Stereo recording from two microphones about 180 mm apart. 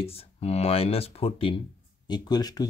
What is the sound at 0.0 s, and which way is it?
Speech, 35° left (ahead or behind).